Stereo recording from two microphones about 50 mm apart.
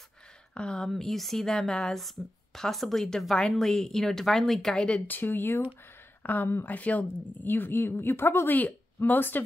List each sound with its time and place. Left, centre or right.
0.6 s a woman's voice: centre
5.0 s speech: left
7.4 s speech: left
8.5 s speech: left